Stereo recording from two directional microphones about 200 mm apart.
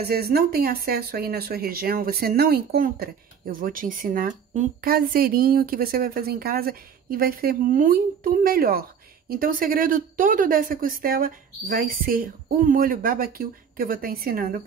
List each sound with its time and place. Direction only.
0.0 s speech: 50° right (ahead or behind)